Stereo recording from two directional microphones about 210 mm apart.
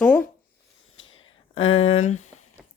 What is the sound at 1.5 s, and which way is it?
Speech, 70° left (ahead or behind).